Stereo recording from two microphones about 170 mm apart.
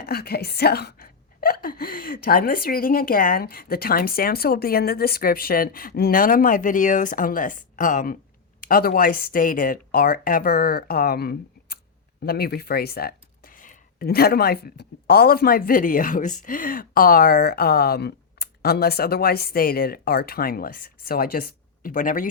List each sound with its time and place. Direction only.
0.0 s speech: 65° left (ahead or behind)